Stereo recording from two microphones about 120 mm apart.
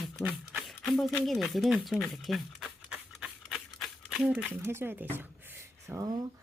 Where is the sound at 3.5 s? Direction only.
Centre (ahead or behind).